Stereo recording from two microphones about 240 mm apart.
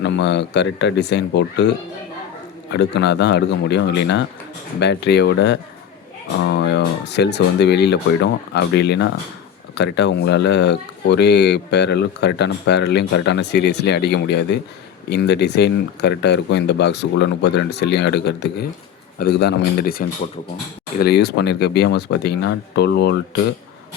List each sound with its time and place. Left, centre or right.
0.0 s speech: left
2.7 s speech: left